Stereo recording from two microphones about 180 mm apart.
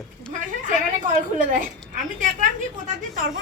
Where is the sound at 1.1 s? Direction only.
50° right (ahead or behind).